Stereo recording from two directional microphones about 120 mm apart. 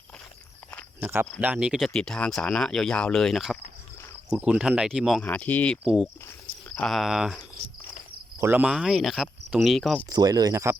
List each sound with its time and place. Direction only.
0.7 s walk: 10° left (ahead or behind)
1.0 s cricket: 20° right (ahead or behind)
1.4 s speech: 10° right (ahead or behind)
1.9 s speech: 5° left (ahead or behind)
5.2 s speech: 15° left (ahead or behind)
5.8 s speech: 5° right (ahead or behind)
6.7 s speech: 5° left (ahead or behind)
8.4 s speech: 15° right (ahead or behind)
8.7 s speech: 5° right (ahead or behind)
10.1 s speech: 35° right (ahead or behind)